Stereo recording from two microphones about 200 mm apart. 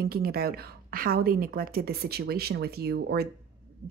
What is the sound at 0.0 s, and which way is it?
Speech, 50° right (ahead or behind).